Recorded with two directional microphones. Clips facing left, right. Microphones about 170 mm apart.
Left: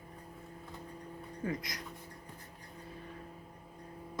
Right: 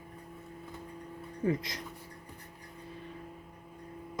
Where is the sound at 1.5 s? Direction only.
25° right (ahead or behind).